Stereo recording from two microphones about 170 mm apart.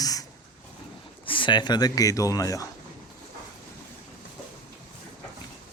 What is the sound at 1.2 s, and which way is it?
Speech, 30° left (ahead or behind).